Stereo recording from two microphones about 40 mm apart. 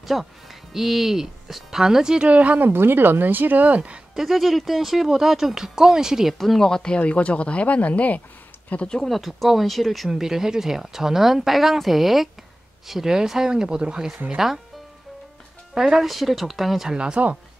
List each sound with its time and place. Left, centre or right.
0.0 s speech: centre
2.2 s speech: right
2.7 s speech: right
4.1 s speech: centre
6.3 s speech: centre
6.7 s speech: left
7.0 s speech: left
9.0 s speech: centre; by 14.0 s right
14.3 s speech: centre
15.7 s speech: centre
16.9 s speech: right